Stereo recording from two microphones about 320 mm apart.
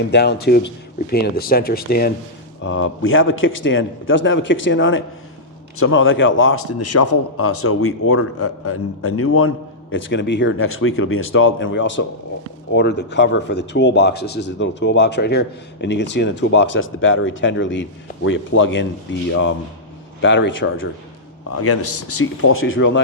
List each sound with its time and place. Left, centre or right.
0.0 s a man's voice: left